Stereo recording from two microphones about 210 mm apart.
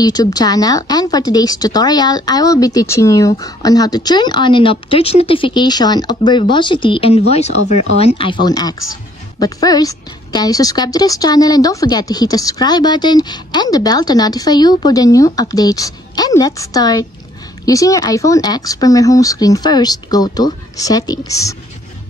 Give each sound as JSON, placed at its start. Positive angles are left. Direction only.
{"t": 0.0, "sound": "a woman's voice", "side_deg": 20}